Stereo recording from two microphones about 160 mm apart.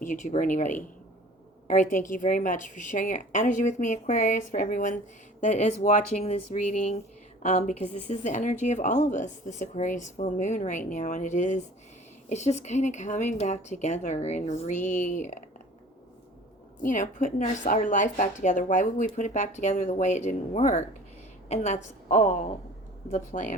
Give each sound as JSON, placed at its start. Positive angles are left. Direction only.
{"t": 0.0, "sound": "a woman's voice", "side_deg": 50}
{"t": 16.8, "sound": "a woman's voice", "side_deg": 55}
{"t": 23.0, "sound": "a woman's voice", "side_deg": 50}